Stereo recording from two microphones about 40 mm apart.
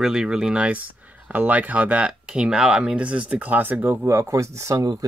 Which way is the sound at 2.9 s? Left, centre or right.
Right.